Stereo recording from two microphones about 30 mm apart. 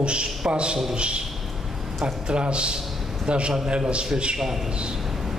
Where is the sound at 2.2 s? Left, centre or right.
Right.